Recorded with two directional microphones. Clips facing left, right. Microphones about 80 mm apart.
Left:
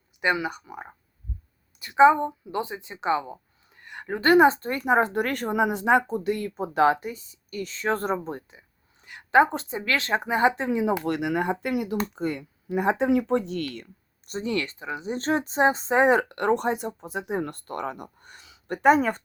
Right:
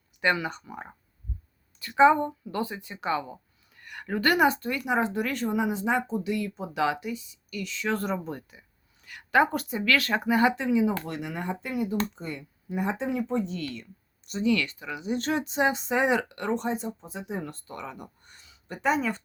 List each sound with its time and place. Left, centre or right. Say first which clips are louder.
0.2 s speech: left 1 dB; centre
1.8 s a woman's voice: left 2 dB; centre
10.7 s speech: even; left
11.0 s speech: left 8 dB; left
14.3 s speech: right 2 dB; left
18.8 s speech: left 7 dB; left